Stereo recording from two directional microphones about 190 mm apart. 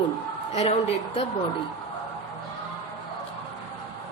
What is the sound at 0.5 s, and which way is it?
Speech, 35° left (ahead or behind).